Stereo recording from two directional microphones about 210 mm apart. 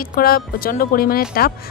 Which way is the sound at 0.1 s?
45° left (ahead or behind).